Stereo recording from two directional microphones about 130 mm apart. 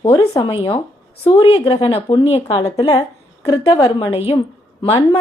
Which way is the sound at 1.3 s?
45° left (ahead or behind).